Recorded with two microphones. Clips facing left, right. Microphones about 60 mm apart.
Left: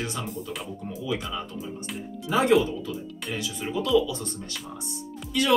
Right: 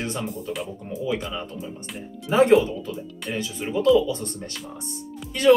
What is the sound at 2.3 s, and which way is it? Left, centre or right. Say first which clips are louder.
A man's voice: right 4 dB; right.